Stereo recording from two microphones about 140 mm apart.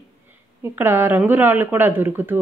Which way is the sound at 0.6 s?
15° right (ahead or behind).